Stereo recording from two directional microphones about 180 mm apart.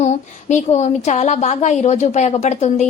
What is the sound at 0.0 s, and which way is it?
A woman's voice, 40° left (ahead or behind).